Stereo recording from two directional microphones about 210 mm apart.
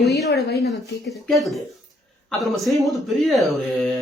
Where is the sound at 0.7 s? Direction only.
Centre (ahead or behind).